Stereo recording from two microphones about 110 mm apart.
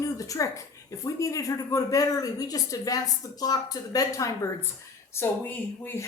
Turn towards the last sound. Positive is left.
turn(degrees=20)  # may be behind; listen again after turning